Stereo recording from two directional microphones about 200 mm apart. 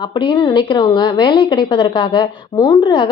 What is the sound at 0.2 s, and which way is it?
A woman's voice, 20° left (ahead or behind).